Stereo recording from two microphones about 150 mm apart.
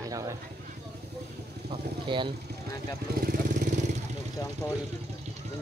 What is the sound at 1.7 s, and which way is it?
Speech, 35° right (ahead or behind).